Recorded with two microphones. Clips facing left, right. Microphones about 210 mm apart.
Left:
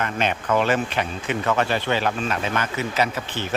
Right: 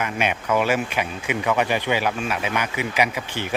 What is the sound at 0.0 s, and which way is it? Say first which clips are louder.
Speech: even; 10° right (ahead or behind).